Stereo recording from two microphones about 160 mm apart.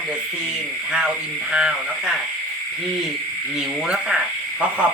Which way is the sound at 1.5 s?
5° right (ahead or behind).